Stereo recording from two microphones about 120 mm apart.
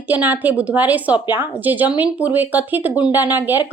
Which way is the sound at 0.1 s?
15° right (ahead or behind).